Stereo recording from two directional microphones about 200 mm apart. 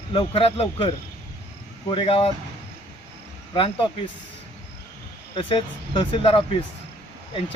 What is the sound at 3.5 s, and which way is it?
Speech, 25° left (ahead or behind).